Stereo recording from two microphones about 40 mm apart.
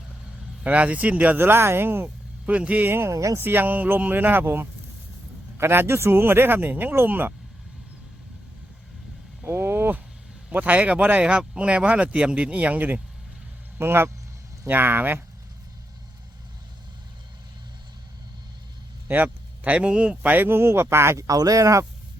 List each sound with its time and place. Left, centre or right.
0.6 s speech: right
1.4 s a man's voice: right
2.5 s speech: right
2.8 s speech: right
5.5 s a man's voice: right
9.4 s a sound: right
10.5 s speech: right
13.7 s speech: right
14.7 s speech: right
19.0 s a sound: right
19.7 s speech: right
20.2 s speech: right
20.5 s speech: right